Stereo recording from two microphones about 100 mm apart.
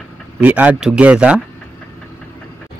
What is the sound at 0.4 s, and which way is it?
Speech, 15° right (ahead or behind).